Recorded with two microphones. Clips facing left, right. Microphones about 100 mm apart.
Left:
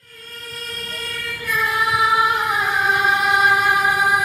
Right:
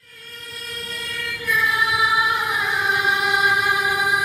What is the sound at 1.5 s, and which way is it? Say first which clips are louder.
Singing: left 1 dB; 40° left (ahead or behind).